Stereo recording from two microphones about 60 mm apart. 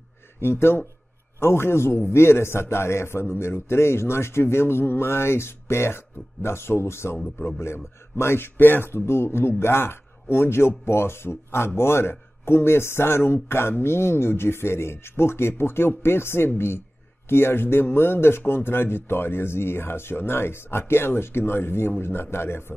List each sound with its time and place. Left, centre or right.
0.4 s a man's voice: left